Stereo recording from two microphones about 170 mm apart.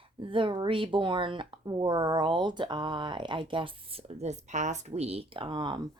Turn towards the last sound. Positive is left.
turn(degrees=-25)  # may be behind; listen again after turning